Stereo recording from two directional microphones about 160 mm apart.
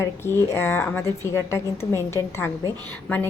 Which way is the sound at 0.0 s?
15° left (ahead or behind).